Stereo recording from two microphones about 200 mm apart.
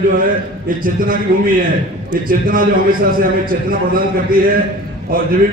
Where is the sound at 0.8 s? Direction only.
45° right (ahead or behind).